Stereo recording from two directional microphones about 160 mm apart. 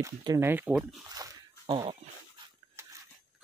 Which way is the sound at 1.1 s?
25° right (ahead or behind).